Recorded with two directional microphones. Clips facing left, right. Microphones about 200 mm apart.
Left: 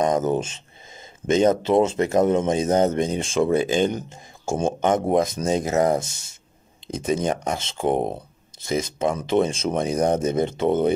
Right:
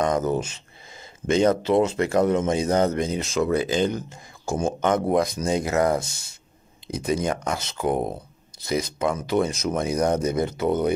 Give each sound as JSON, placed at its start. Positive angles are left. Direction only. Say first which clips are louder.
{"t": 0.0, "sound": "speech", "louder": "left 2 dB", "side_deg": 20}